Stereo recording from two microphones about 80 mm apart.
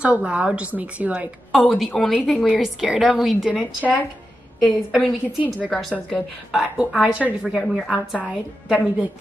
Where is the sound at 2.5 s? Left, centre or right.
Centre.